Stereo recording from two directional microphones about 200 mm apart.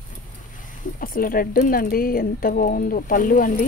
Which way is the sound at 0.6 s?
40° left (ahead or behind).